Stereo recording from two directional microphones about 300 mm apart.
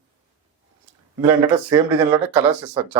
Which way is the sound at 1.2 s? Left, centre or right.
Centre.